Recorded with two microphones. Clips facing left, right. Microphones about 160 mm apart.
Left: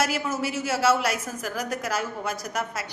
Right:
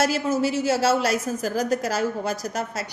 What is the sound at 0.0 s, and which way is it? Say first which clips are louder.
A woman's voice: right 5 dB; 30° right (ahead or behind).